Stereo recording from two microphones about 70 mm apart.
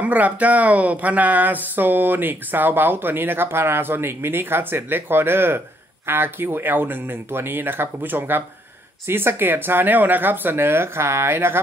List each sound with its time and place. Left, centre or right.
0.0 s speech: right